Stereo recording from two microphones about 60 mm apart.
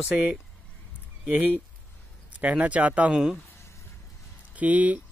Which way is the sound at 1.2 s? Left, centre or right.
Right.